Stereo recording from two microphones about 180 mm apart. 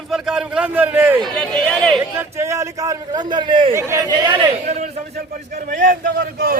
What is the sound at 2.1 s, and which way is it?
A man's voice, 15° right (ahead or behind).